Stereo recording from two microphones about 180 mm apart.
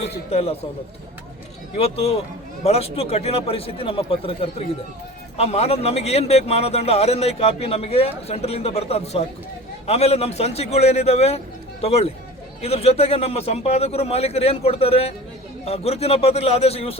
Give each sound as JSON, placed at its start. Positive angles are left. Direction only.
{"t": 0.3, "sound": "a man's voice", "side_deg": 35}
{"t": 1.7, "sound": "a man's voice", "side_deg": 35}